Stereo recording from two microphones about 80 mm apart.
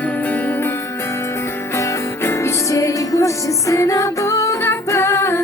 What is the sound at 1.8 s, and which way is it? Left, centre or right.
Music, left.